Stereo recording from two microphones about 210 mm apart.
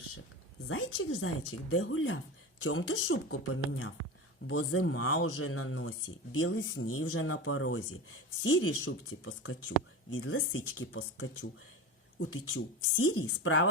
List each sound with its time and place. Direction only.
0.7 s speech: 80° left